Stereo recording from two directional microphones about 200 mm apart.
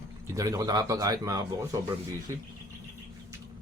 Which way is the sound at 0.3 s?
15° right (ahead or behind).